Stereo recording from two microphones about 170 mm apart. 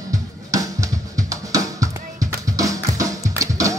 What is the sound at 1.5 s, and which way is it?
Drum, 20° right (ahead or behind).